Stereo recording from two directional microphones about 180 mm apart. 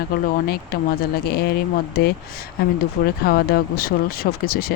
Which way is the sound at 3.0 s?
60° left (ahead or behind).